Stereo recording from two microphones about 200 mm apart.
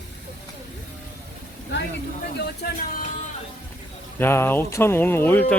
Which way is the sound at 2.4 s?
55° left (ahead or behind).